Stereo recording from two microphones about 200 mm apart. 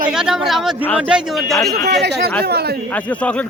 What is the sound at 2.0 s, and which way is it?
Speech, 55° right (ahead or behind).